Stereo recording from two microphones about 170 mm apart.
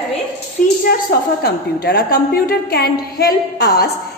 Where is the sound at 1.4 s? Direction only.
65° left (ahead or behind).